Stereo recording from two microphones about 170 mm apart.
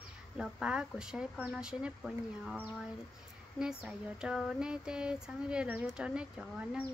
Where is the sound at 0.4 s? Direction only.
5° right (ahead or behind).